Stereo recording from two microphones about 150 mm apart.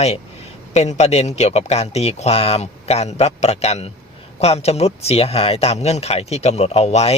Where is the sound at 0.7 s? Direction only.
50° left (ahead or behind).